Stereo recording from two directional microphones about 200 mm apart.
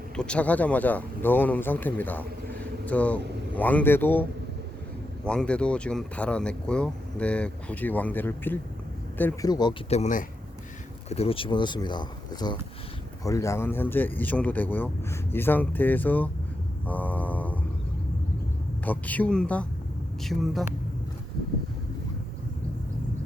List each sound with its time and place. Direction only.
0.2 s speech: 5° left (ahead or behind)
9.5 s speech: 20° left (ahead or behind)
9.9 s speech: 35° left (ahead or behind); by 17.6 s 10° left (ahead or behind)
18.9 s speech: 10° left (ahead or behind)